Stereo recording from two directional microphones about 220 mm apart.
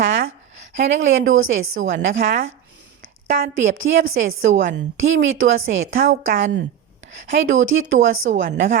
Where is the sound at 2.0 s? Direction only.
40° right (ahead or behind).